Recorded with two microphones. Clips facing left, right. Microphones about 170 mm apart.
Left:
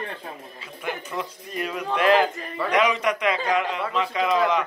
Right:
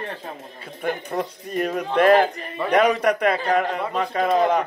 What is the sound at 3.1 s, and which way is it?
A man's voice, 55° right (ahead or behind).